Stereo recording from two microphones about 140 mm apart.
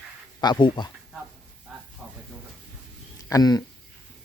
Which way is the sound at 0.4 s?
30° left (ahead or behind).